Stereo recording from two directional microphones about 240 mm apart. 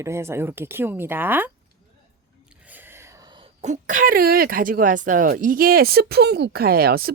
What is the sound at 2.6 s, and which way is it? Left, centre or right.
Speech, centre.